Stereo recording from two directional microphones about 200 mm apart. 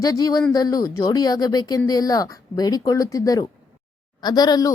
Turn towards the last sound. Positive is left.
turn(degrees=20)  # may be behind; listen again after turning